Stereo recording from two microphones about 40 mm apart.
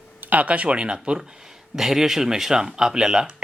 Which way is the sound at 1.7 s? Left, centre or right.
Centre.